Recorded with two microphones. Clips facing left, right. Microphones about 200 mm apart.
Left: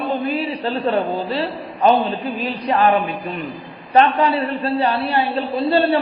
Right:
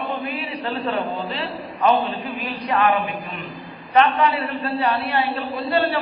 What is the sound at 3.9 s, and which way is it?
A man's voice, 30° left (ahead or behind).